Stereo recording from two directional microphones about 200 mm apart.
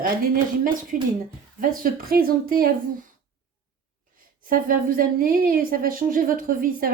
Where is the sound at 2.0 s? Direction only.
45° right (ahead or behind).